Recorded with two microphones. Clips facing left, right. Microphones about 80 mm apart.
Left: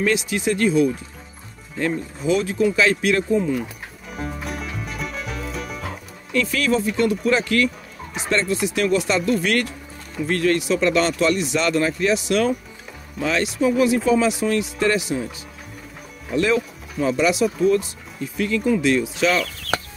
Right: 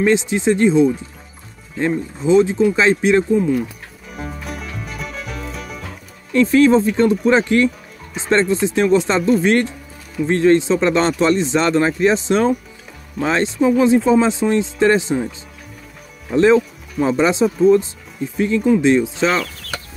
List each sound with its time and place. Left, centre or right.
0.0 s speech: right
3.3 s speech: centre
4.1 s music: centre
6.3 s speech: right
16.3 s speech: right